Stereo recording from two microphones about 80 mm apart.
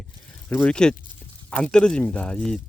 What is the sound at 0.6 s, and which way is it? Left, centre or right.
Speech, centre.